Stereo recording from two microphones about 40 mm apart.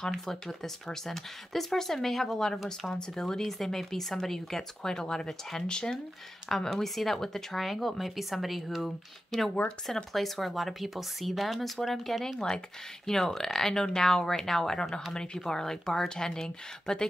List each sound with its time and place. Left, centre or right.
0.1 s speech: centre
6.5 s speech: centre